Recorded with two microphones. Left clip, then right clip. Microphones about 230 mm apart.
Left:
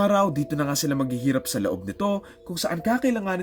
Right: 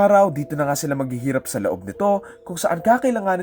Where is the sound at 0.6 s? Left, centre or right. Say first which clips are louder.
Right 6 dB; centre.